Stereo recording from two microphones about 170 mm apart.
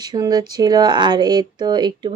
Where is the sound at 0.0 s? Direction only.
25° right (ahead or behind).